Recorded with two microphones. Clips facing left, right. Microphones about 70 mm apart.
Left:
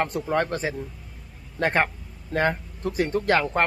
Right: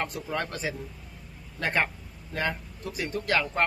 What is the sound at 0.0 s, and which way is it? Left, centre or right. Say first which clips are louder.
Speech: left 7 dB; left.